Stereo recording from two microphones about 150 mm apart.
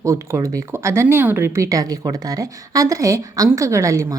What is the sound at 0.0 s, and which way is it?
Speech, 20° right (ahead or behind).